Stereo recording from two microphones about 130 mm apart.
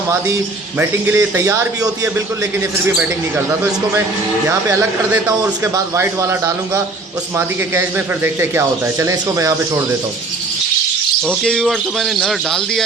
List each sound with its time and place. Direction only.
0.8 s speech: 20° right (ahead or behind)
11.3 s speech: 5° left (ahead or behind)